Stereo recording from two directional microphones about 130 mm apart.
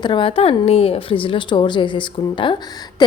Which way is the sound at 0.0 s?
40° left (ahead or behind).